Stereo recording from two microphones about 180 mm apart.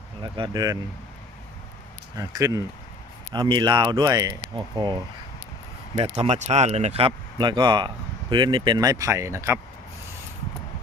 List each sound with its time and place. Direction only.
0.2 s speech: 25° right (ahead or behind)
2.1 s speech: 20° right (ahead or behind)
6.0 s speech: 35° right (ahead or behind); by 9.6 s 15° right (ahead or behind)